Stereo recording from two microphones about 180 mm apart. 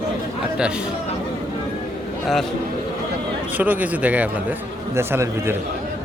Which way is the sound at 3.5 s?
10° right (ahead or behind).